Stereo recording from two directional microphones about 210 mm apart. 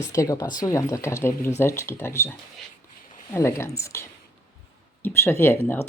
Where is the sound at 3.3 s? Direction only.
15° left (ahead or behind).